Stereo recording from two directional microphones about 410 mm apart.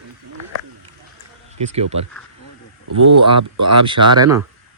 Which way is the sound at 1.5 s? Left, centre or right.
Centre.